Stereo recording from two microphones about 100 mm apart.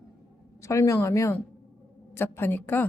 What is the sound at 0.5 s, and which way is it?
A woman's voice, 30° left (ahead or behind).